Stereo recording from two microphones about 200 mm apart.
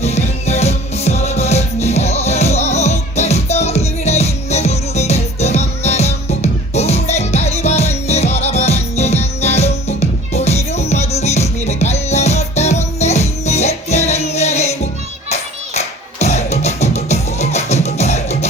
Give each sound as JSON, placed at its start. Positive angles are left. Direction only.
{"t": 0.0, "sound": "music", "side_deg": 35}